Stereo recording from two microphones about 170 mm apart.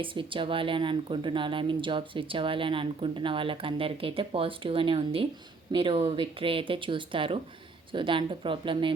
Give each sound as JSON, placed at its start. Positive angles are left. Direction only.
{"t": 0.0, "sound": "speech", "side_deg": -30}